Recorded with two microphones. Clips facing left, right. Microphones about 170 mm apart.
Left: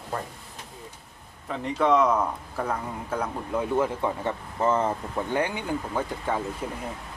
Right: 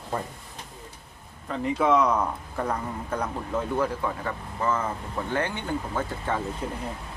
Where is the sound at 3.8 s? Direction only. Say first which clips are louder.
Left 2 dB; 25° left (ahead or behind).